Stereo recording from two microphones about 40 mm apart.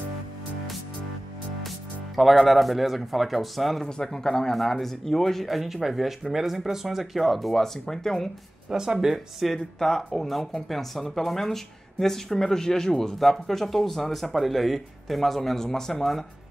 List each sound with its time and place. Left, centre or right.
2.1 s speech: centre
3.8 s speech: centre
8.6 s speech: centre
9.5 s speech: centre